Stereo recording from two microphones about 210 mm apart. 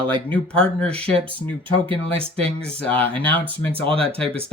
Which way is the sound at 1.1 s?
25° right (ahead or behind).